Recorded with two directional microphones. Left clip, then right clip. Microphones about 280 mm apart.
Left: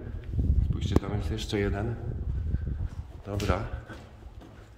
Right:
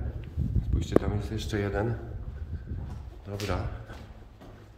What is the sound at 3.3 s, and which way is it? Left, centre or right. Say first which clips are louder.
Speech: left 3 dB; centre.